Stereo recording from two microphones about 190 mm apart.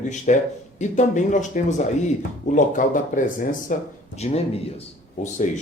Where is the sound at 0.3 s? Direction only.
40° left (ahead or behind).